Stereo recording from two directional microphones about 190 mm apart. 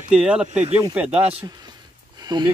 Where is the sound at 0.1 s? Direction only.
5° right (ahead or behind).